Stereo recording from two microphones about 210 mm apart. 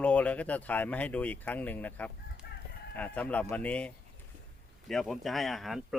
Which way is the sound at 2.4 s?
50° left (ahead or behind).